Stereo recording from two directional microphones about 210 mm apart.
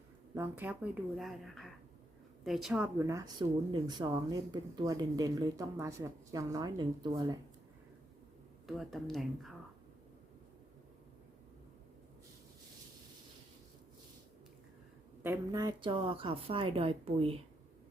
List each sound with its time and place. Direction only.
0.3 s speech: 10° right (ahead or behind)
8.6 s speech: centre (ahead or behind)
15.2 s a woman's voice: 15° right (ahead or behind)